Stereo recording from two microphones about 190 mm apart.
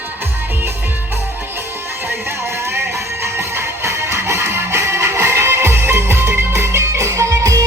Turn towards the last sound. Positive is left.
turn(degrees=-15)  # may be behind; listen again after turning